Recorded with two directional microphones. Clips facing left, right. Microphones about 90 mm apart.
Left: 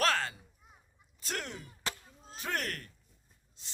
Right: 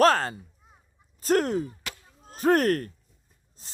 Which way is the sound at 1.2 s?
45° right (ahead or behind).